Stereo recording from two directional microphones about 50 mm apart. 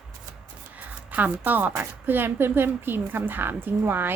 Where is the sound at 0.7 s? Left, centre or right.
Right.